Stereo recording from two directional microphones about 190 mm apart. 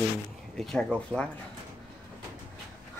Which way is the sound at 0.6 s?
Centre (ahead or behind).